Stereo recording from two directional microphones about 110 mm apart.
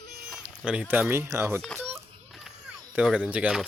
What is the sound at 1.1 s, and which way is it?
Speech, 25° right (ahead or behind).